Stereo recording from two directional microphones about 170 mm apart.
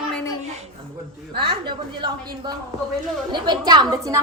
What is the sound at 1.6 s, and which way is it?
Speech, 25° right (ahead or behind).